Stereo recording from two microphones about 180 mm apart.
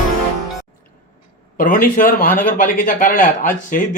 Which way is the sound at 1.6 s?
50° left (ahead or behind).